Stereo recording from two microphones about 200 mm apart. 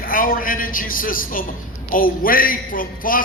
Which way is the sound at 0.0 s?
45° left (ahead or behind).